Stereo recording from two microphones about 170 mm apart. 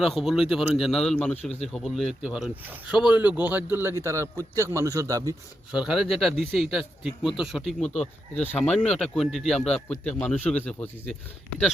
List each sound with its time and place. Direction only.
0.0 s a man's voice: centre (ahead or behind); by 5.3 s 20° right (ahead or behind)
5.7 s a man's voice: 5° right (ahead or behind)